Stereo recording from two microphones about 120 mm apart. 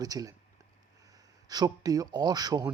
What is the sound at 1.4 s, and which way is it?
Speech, 35° right (ahead or behind).